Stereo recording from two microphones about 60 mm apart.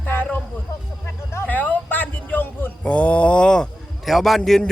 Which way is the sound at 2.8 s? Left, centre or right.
Left.